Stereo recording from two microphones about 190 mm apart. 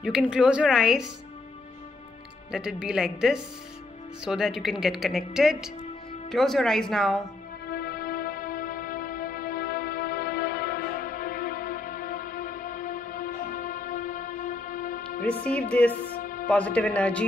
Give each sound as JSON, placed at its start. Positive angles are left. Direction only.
{"t": 0.0, "sound": "a woman's voice", "side_deg": -5}
{"t": 2.5, "sound": "a woman's voice", "side_deg": -5}
{"t": 7.7, "sound": "music", "side_deg": 55}
{"t": 16.4, "sound": "a man's voice", "side_deg": 5}